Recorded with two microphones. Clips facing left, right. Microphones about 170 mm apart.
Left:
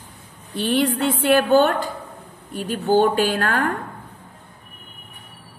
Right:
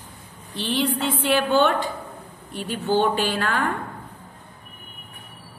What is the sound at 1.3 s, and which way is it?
A woman's voice, 45° left (ahead or behind).